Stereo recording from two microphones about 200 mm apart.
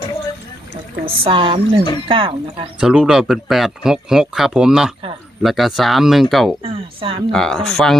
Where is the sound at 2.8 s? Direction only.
5° right (ahead or behind).